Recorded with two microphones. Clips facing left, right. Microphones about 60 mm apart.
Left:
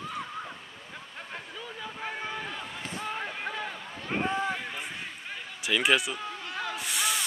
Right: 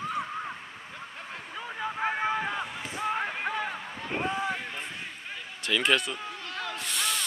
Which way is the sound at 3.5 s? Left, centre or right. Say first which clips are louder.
Right 4 dB; centre.